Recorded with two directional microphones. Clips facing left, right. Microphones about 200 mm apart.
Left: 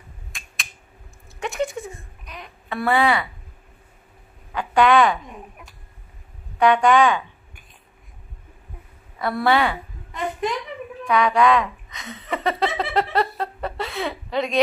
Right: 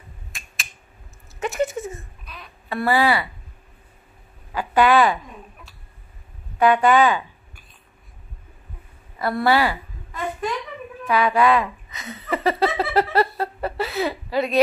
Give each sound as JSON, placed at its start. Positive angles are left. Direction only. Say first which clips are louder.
{"t": 0.3, "sound": "computer keyboard", "louder": "even", "side_deg": 0}
{"t": 1.4, "sound": "a sound", "louder": "right 2 dB", "side_deg": 0}
{"t": 2.2, "sound": "babbling", "louder": "left 3 dB", "side_deg": 20}
{"t": 2.7, "sound": "speech", "louder": "even", "side_deg": 0}
{"t": 4.5, "sound": "a woman's voice", "louder": "even", "side_deg": -5}
{"t": 6.6, "sound": "speech", "louder": "even", "side_deg": -5}
{"t": 9.2, "sound": "speech", "louder": "right 1 dB", "side_deg": 0}
{"t": 11.1, "sound": "speech", "louder": "even", "side_deg": -5}